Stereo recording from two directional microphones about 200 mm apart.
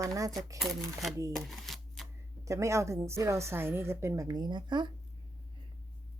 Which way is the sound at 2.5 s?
15° right (ahead or behind).